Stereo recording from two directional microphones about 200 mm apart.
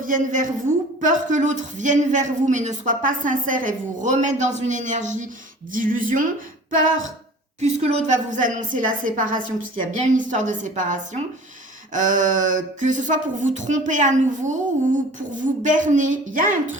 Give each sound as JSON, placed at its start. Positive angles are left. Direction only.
{"t": 0.0, "sound": "a woman's voice", "side_deg": -40}
{"t": 7.6, "sound": "a woman's voice", "side_deg": -30}
{"t": 15.6, "sound": "a woman's voice", "side_deg": -40}